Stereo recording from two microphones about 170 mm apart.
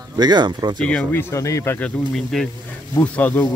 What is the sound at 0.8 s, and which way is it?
Speech, 5° left (ahead or behind).